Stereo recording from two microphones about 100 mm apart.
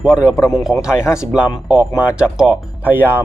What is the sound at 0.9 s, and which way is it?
Speech, 30° left (ahead or behind).